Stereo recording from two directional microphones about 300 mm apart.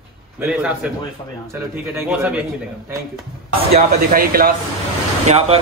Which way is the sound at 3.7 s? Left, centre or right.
Right.